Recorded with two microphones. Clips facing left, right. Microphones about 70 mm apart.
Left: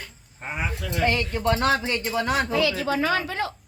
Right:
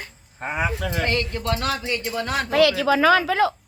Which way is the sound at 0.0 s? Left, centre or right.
Right.